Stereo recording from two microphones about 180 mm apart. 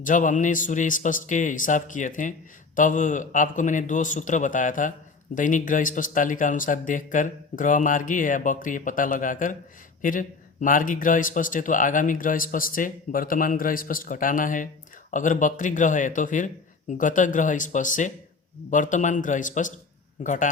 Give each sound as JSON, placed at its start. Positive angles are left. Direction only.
{"t": 0.0, "sound": "a man's voice", "side_deg": 45}